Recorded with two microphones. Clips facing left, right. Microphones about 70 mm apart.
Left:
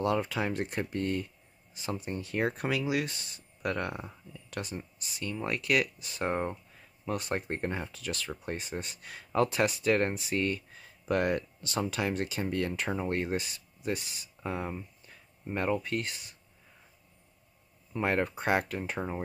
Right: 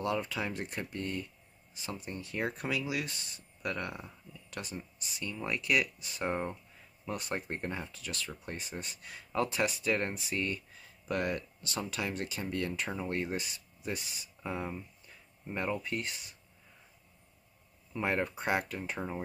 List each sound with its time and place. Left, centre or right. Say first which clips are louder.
0.0 s speech: left 4 dB; centre
17.9 s speech: left 3 dB; centre